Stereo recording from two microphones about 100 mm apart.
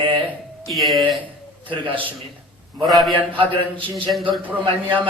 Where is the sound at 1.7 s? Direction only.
55° right (ahead or behind).